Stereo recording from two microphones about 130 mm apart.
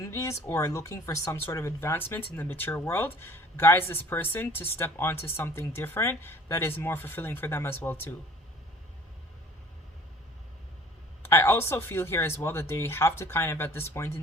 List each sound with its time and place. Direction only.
0.0 s speech: 25° left (ahead or behind)
11.2 s speech: 20° left (ahead or behind)